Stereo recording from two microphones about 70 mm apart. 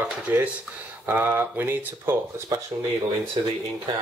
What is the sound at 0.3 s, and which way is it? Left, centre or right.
Speech, right.